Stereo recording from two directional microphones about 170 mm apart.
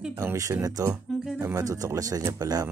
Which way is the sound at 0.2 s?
20° right (ahead or behind).